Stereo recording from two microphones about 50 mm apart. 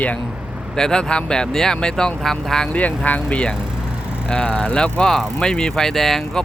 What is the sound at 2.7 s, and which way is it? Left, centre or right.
Speech, left.